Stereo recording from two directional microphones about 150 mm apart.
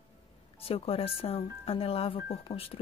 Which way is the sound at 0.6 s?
40° left (ahead or behind).